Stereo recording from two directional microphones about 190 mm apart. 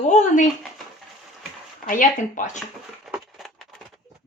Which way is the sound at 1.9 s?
45° left (ahead or behind).